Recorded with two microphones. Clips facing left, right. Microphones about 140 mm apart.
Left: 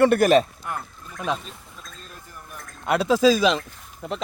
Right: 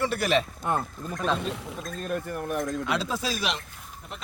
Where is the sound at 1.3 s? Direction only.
70° right (ahead or behind).